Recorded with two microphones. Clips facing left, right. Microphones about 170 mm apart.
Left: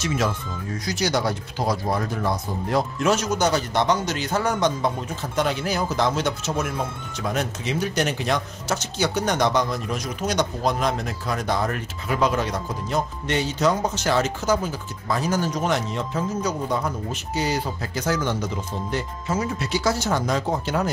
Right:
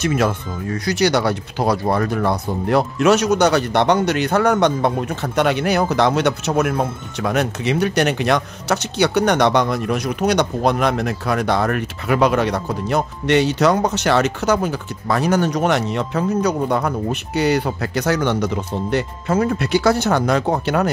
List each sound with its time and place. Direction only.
0.0 s speech: 60° right (ahead or behind)